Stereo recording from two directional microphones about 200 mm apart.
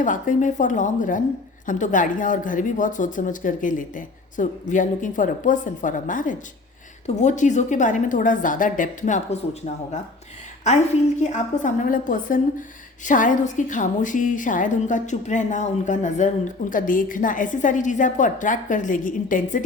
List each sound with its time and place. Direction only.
0.0 s a woman's voice: 40° left (ahead or behind)
11.2 s a woman's voice: 35° left (ahead or behind)